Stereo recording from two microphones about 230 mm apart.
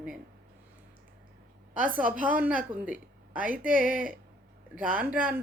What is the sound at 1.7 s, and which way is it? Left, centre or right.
Speech, centre.